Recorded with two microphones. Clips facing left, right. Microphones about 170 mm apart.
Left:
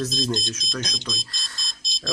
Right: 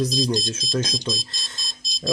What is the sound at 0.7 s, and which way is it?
Speech, 25° right (ahead or behind).